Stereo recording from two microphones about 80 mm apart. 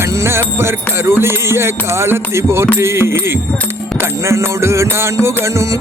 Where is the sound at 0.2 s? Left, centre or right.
Right.